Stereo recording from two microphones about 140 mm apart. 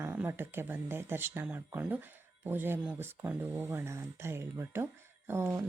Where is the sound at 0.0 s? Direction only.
15° right (ahead or behind).